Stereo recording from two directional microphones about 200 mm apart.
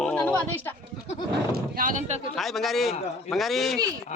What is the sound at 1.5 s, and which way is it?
Speech, 45° right (ahead or behind).